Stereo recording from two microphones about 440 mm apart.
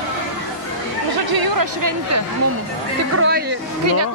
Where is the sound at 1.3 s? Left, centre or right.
Right.